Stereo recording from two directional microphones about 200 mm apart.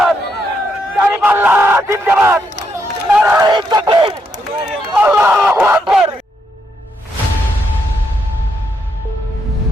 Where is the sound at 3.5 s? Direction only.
20° right (ahead or behind).